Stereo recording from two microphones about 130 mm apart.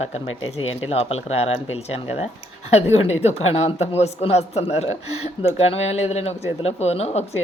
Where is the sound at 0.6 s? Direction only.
50° left (ahead or behind).